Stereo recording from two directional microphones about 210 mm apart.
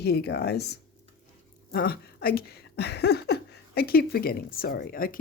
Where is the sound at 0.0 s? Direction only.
50° left (ahead or behind).